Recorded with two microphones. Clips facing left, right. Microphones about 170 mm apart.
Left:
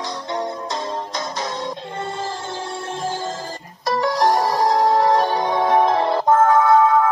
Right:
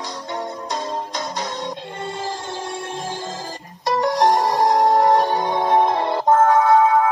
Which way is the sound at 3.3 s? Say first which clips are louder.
Left 1 dB; 20° right (ahead or behind).